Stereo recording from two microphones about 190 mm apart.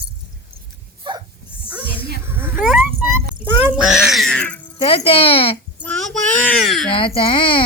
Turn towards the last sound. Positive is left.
turn(degrees=25)  # may be behind; listen again after turning